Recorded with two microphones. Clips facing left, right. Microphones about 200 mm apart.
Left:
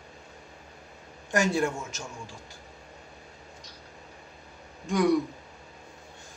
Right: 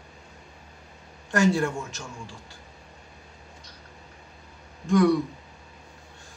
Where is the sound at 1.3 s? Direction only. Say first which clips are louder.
Right 3 dB; 15° left (ahead or behind).